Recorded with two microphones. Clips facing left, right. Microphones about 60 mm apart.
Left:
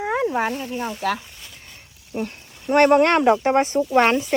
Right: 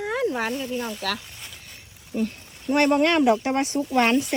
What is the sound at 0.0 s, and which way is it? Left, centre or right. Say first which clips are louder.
Snake: left 3 dB; left.